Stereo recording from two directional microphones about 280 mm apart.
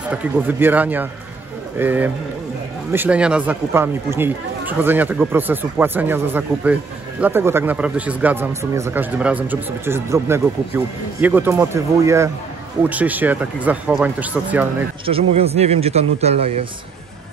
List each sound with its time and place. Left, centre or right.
0.1 s speech: centre
15.0 s a man's voice: right